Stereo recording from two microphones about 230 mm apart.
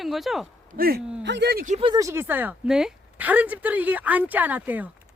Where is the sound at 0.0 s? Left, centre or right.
Centre.